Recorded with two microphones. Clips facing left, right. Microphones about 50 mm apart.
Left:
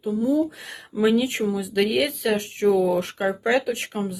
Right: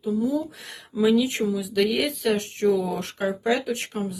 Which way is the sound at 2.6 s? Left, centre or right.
Left.